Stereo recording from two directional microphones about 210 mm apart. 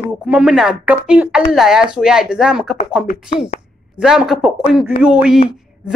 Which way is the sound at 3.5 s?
30° left (ahead or behind).